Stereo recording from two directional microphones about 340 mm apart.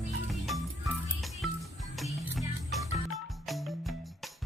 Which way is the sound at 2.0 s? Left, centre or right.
Centre.